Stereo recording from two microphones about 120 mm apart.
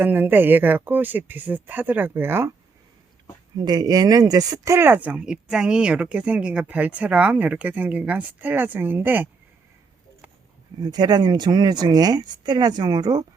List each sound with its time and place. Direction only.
0.0 s speech: 15° right (ahead or behind)
3.6 s speech: 35° right (ahead or behind); by 9.3 s 15° right (ahead or behind)
10.8 s speech: 35° right (ahead or behind)